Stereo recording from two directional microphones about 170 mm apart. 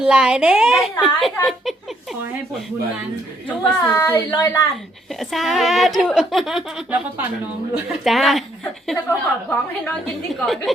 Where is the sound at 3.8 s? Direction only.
20° left (ahead or behind).